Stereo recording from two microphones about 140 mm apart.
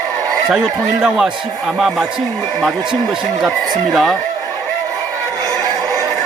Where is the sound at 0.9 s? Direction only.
5° right (ahead or behind).